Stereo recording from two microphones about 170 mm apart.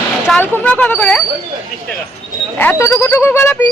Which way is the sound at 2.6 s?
15° left (ahead or behind).